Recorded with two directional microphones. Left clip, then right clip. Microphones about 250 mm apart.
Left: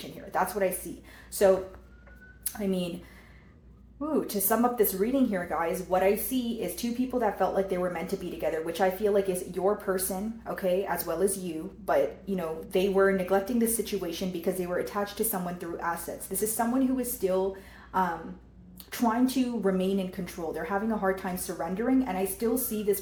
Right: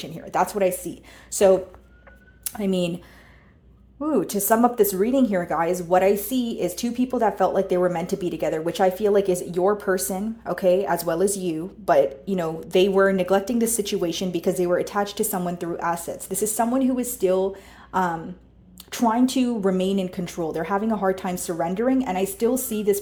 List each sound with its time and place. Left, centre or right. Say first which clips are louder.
0.3 s speech: right 6 dB; right
4.0 s speech: right 6 dB; right
18.9 s speech: right 6 dB; right